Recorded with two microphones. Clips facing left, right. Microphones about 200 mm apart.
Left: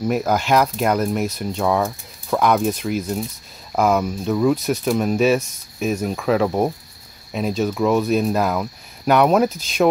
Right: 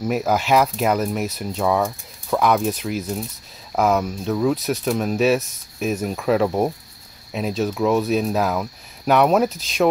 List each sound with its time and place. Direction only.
0.0 s speech: 5° right (ahead or behind)